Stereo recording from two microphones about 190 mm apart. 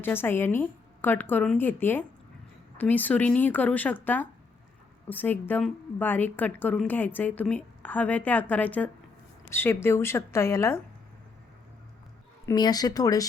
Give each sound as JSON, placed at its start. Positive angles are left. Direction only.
{"t": 0.0, "sound": "a woman's voice", "side_deg": 10}
{"t": 12.5, "sound": "speech", "side_deg": 20}